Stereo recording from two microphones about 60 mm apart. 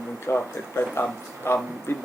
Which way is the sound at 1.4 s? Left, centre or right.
Left.